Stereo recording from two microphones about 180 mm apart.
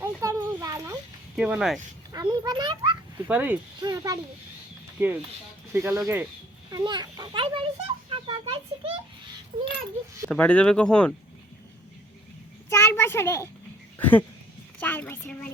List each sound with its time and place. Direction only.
0.0 s a sound: 15° right (ahead or behind)
1.4 s speech: 5° right (ahead or behind)
2.1 s a child's voice: 25° right (ahead or behind)
3.2 s speech: 10° right (ahead or behind)
3.8 s speech: 20° right (ahead or behind)
6.7 s a child's voice: 20° right (ahead or behind)
10.2 s speech: 5° left (ahead or behind)
12.7 s a child's voice: 15° left (ahead or behind)